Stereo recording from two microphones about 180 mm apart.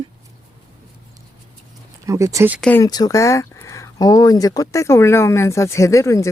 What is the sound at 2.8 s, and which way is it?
Speech, 20° left (ahead or behind).